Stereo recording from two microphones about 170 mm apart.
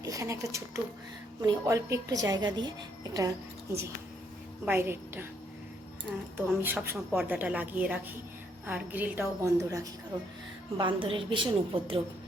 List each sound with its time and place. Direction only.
0.0 s a woman's voice: 20° right (ahead or behind)
6.3 s a woman's voice: 10° right (ahead or behind)
10.8 s a woman's voice: 30° right (ahead or behind)